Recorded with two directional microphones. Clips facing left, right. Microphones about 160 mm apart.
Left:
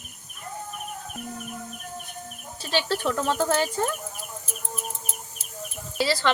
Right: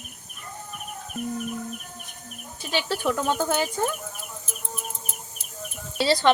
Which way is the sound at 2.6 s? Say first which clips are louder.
Even; 10° right (ahead or behind).